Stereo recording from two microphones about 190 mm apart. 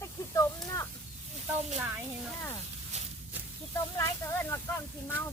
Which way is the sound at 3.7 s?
15° left (ahead or behind).